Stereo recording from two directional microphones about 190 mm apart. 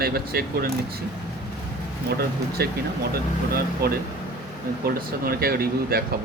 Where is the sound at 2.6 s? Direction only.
55° right (ahead or behind).